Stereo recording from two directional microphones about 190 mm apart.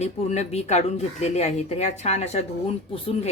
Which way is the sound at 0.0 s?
35° left (ahead or behind).